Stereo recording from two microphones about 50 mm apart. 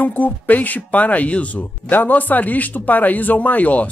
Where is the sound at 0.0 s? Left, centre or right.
Left.